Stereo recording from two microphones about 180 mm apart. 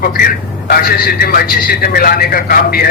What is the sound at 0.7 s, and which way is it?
A man's voice, 55° left (ahead or behind).